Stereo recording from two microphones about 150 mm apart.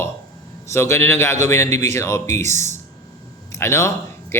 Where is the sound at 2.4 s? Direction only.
50° right (ahead or behind).